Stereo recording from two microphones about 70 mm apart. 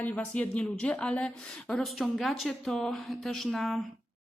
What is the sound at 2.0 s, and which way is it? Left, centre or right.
Speech, centre.